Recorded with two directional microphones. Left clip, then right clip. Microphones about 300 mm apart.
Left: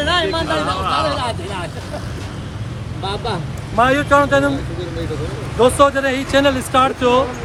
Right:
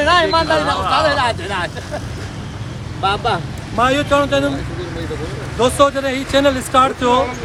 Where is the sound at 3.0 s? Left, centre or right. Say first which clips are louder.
Right 6 dB; centre.